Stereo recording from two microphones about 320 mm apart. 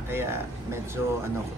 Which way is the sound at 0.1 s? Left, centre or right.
Centre.